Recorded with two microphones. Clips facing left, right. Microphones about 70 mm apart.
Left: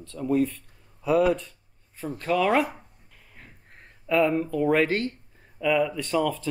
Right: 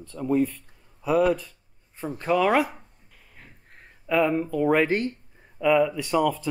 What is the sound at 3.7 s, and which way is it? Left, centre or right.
Speech, centre.